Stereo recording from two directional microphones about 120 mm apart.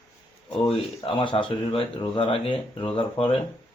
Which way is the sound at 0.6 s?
50° left (ahead or behind).